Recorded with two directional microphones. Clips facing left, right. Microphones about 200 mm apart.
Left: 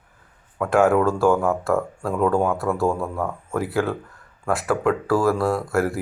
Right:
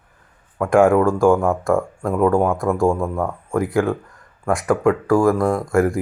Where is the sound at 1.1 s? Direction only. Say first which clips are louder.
Right 4 dB; 15° right (ahead or behind).